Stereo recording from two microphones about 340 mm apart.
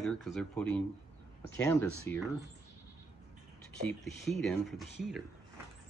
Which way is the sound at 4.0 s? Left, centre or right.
Centre.